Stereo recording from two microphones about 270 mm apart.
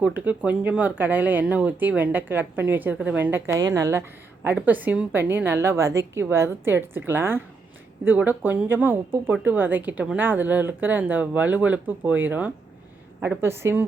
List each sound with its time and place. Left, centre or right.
0.0 s speech: centre